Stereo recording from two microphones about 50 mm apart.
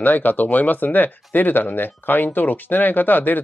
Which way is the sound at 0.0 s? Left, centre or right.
Left.